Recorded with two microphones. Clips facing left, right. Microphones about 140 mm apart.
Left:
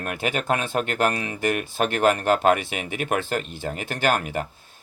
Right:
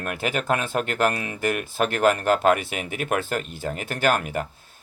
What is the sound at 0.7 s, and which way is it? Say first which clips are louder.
Speech: even; 45° left (ahead or behind).